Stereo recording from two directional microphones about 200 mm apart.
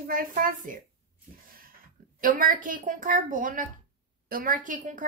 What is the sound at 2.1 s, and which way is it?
A woman's voice, 45° right (ahead or behind).